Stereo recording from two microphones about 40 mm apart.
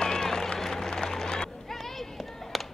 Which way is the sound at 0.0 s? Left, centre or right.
Centre.